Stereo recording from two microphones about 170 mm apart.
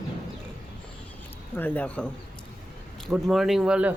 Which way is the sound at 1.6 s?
10° left (ahead or behind).